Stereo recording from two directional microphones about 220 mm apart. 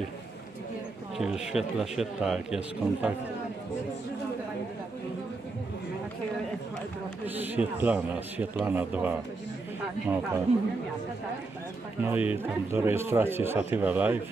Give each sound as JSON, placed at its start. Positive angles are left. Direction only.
{"t": 1.1, "sound": "a man's voice", "side_deg": -5}
{"t": 7.2, "sound": "speech", "side_deg": -10}
{"t": 10.5, "sound": "speech", "side_deg": -30}
{"t": 12.0, "sound": "speech", "side_deg": -10}